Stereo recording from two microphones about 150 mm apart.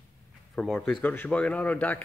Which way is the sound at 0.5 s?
10° left (ahead or behind).